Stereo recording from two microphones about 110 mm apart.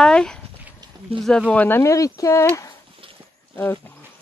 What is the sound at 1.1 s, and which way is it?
Speech, 60° right (ahead or behind).